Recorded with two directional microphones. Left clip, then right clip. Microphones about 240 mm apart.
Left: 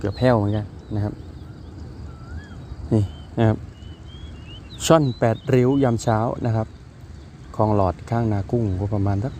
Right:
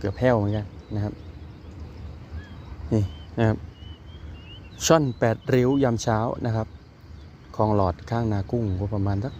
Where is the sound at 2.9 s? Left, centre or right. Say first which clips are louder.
Left 3 dB; centre.